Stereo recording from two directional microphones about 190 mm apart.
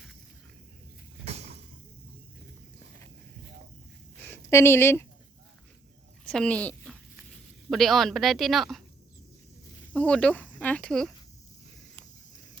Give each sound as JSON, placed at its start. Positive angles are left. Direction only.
{"t": 1.2, "sound": "a sound", "side_deg": -35}
{"t": 4.2, "sound": "speech", "side_deg": 10}
{"t": 6.2, "sound": "a woman's voice", "side_deg": 5}
{"t": 9.9, "sound": "speech", "side_deg": 5}